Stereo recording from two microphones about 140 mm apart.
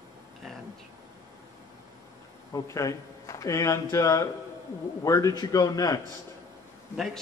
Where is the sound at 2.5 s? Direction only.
25° left (ahead or behind).